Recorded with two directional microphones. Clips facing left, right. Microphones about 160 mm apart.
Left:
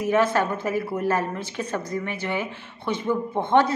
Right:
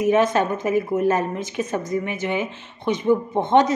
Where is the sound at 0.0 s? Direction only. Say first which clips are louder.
Right 3 dB; 20° right (ahead or behind).